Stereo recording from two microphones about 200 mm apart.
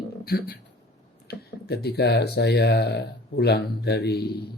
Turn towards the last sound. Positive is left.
turn(degrees=55)  # may be behind; listen again after turning